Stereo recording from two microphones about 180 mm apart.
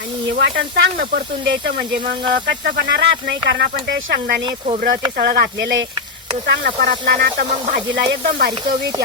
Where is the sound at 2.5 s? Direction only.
70° right (ahead or behind).